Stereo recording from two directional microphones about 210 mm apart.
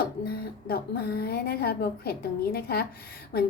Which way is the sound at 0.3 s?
45° left (ahead or behind).